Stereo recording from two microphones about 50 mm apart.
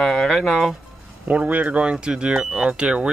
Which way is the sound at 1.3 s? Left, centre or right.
Right.